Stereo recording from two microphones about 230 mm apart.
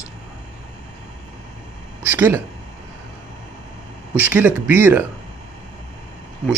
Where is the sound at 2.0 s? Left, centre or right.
Centre.